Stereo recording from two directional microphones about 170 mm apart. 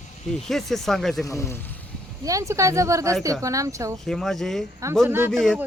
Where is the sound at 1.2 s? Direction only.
15° left (ahead or behind).